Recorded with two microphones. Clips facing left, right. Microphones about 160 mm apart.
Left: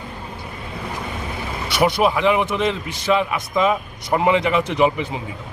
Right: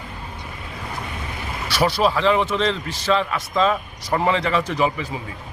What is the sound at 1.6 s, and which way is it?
A man's voice, 20° left (ahead or behind).